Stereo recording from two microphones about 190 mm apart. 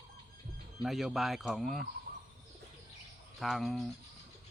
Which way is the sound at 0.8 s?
Centre (ahead or behind).